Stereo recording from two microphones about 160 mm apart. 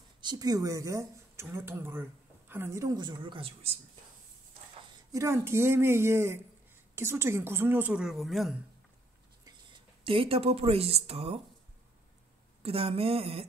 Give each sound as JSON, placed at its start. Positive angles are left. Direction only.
{"t": 0.2, "sound": "speech", "side_deg": -25}
{"t": 5.1, "sound": "speech", "side_deg": -15}
{"t": 9.4, "sound": "speech", "side_deg": -30}
{"t": 12.6, "sound": "speech", "side_deg": -35}